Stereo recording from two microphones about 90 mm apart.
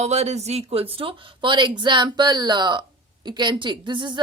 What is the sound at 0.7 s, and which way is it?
Speech, 90° right.